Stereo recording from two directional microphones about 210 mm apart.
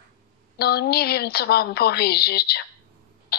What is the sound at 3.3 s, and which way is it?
Tick, 50° left (ahead or behind).